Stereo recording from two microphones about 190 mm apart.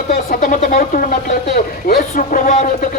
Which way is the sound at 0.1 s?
45° left (ahead or behind).